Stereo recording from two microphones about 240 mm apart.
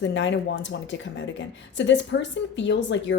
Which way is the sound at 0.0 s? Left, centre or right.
Left.